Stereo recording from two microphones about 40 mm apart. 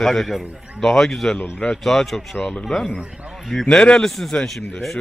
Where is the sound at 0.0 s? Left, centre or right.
Centre.